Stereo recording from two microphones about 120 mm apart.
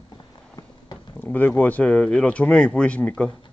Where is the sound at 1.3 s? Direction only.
15° left (ahead or behind).